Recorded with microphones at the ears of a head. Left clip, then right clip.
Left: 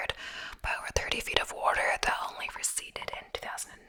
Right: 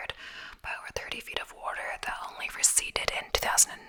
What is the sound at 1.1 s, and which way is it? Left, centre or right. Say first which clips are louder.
Whispering: left 6 dB; left.